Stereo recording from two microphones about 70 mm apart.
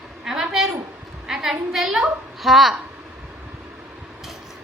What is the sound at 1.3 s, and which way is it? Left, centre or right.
A woman's voice, centre.